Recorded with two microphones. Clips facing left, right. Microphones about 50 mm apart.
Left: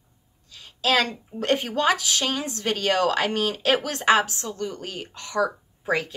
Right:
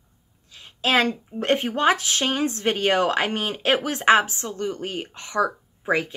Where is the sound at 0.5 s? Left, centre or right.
Right.